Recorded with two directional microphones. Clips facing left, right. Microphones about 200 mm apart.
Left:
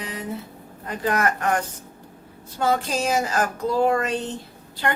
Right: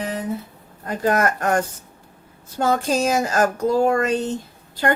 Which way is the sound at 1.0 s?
40° right (ahead or behind).